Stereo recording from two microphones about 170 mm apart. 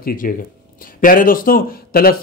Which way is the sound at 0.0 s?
55° left (ahead or behind).